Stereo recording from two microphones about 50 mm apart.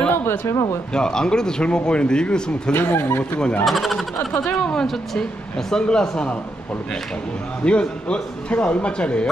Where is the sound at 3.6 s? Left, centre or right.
Centre.